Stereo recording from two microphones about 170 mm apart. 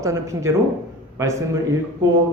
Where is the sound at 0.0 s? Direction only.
15° right (ahead or behind).